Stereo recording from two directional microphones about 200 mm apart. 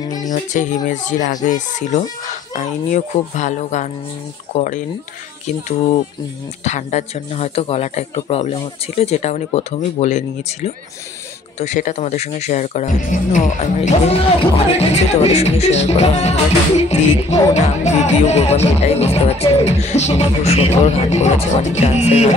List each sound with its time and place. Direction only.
0.3 s speech: 40° left (ahead or behind)
6.6 s speech: 35° left (ahead or behind)